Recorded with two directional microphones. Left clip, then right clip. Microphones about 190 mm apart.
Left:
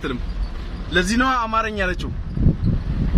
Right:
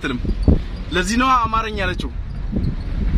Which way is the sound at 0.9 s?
5° right (ahead or behind).